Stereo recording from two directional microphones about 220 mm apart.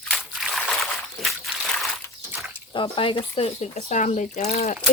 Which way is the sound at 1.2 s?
Centre (ahead or behind).